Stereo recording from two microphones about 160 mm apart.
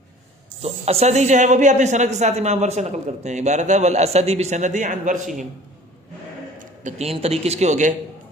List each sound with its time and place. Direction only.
0.6 s speech: 40° right (ahead or behind)
6.8 s speech: 40° right (ahead or behind)